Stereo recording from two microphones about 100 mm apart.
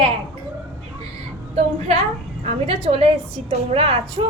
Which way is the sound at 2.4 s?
85° right.